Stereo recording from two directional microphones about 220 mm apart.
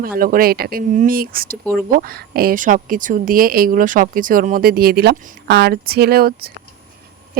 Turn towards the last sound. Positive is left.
turn(degrees=-45)  # may be behind; listen again after turning